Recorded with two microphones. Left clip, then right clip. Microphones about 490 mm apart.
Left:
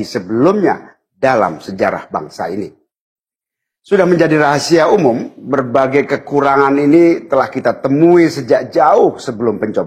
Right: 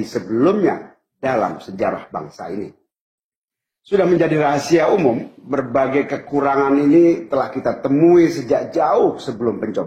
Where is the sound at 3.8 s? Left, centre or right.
Left.